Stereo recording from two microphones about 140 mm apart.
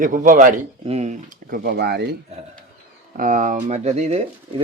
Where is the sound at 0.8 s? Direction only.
50° right (ahead or behind); by 1.7 s 90° right.